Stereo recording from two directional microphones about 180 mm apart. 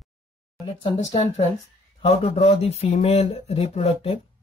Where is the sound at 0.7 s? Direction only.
30° left (ahead or behind).